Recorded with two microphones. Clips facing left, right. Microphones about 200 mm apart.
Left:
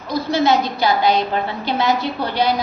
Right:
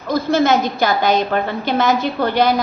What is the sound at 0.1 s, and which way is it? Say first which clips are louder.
A woman's voice: right 2 dB; 50° right (ahead or behind).